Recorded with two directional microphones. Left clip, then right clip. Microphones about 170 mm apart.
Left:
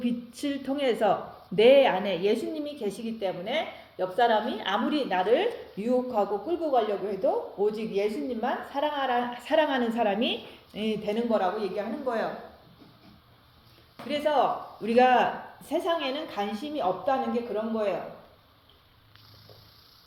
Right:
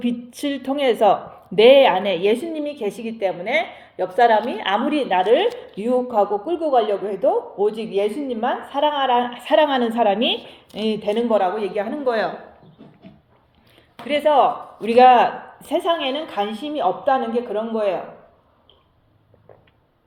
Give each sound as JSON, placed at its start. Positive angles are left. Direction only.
{"t": 0.0, "sound": "a woman's voice", "side_deg": -25}
{"t": 12.0, "sound": "speech", "side_deg": -55}
{"t": 14.1, "sound": "speech", "side_deg": -35}